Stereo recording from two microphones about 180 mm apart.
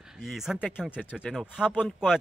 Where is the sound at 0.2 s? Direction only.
Centre (ahead or behind).